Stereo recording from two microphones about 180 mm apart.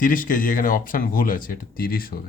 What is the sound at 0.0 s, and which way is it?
Speech, 50° left (ahead or behind).